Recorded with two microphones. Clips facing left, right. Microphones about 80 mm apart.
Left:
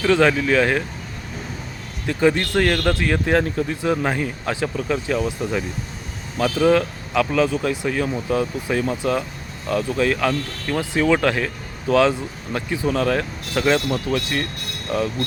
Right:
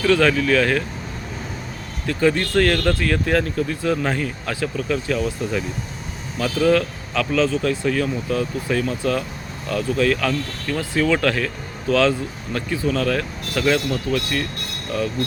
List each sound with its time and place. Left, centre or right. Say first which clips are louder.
0.0 s speech: even; left
2.0 s speech: left 1 dB; left